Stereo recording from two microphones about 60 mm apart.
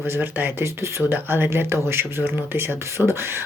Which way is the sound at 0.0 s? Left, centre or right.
Right.